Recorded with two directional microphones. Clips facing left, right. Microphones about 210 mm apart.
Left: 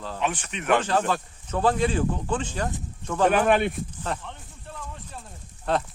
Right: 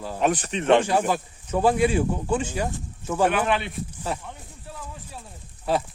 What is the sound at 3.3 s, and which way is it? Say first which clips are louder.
Speech: left 4 dB; 50° left (ahead or behind).